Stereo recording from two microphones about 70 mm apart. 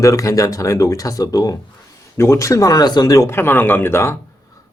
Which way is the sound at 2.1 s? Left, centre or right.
Left.